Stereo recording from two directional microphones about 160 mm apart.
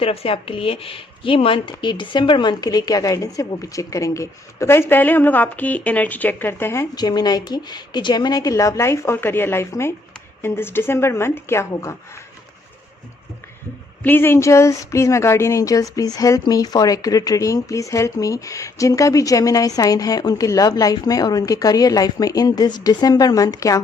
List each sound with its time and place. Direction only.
0.0 s speech: 35° left (ahead or behind); by 11.9 s 20° left (ahead or behind)
14.0 s speech: 15° left (ahead or behind)